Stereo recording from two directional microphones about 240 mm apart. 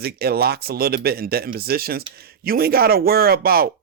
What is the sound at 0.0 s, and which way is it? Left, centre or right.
Speech, right.